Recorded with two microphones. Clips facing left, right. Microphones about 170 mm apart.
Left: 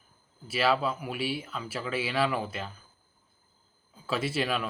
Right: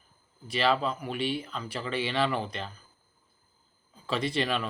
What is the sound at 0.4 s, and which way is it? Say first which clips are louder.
Speech: even; 5° left (ahead or behind).